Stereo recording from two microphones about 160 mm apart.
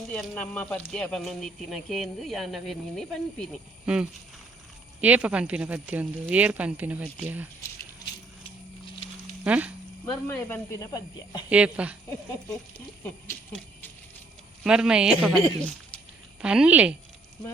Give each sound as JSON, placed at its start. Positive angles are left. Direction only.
{"t": 0.1, "sound": "speech", "side_deg": 5}
{"t": 9.4, "sound": "speech", "side_deg": -10}
{"t": 10.2, "sound": "speech", "side_deg": 15}
{"t": 11.4, "sound": "speech", "side_deg": -5}
{"t": 14.6, "sound": "speech", "side_deg": -5}